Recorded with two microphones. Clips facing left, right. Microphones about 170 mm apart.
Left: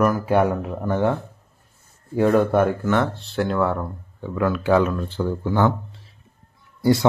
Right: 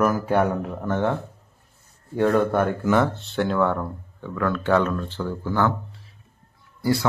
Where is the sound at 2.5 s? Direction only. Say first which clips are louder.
Left 2 dB; 5° left (ahead or behind).